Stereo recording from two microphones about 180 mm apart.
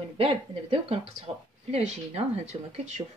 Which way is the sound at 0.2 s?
30° right (ahead or behind).